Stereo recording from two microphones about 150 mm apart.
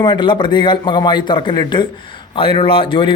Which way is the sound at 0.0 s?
30° left (ahead or behind).